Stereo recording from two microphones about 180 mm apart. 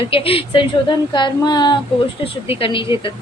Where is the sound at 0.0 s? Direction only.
30° left (ahead or behind).